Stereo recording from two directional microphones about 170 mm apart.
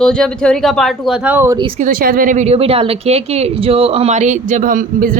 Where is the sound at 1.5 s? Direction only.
30° right (ahead or behind).